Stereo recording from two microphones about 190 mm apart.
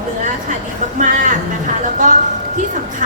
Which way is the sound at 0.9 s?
45° right (ahead or behind).